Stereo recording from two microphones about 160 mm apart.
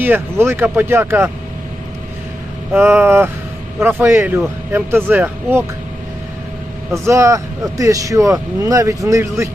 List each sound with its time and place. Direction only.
0.0 s speech: 15° right (ahead or behind)
2.7 s speech: 15° right (ahead or behind)
6.9 s speech: 20° right (ahead or behind)